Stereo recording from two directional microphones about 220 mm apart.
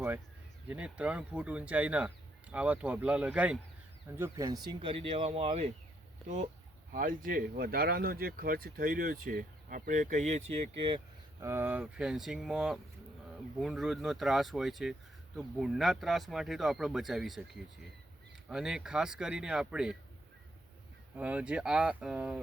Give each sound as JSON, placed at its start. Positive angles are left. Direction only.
{"t": 0.7, "sound": "speech", "side_deg": -5}
{"t": 11.3, "sound": "speech", "side_deg": -10}
{"t": 21.2, "sound": "speech", "side_deg": -5}